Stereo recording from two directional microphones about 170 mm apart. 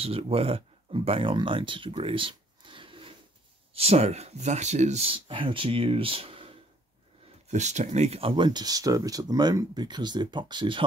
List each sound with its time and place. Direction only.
0.0 s speech: 35° right (ahead or behind)